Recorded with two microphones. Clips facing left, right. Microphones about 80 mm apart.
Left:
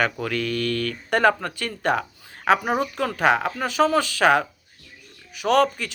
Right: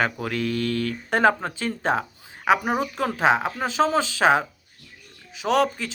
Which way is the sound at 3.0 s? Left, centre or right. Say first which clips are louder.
Right 1 dB; right.